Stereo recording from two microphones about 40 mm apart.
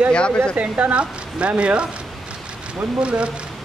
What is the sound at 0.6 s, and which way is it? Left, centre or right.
Speech, right.